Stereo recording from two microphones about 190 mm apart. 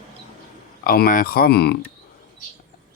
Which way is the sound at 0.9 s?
50° left (ahead or behind).